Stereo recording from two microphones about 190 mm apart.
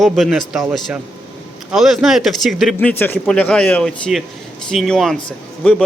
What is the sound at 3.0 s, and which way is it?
Speech, 10° left (ahead or behind).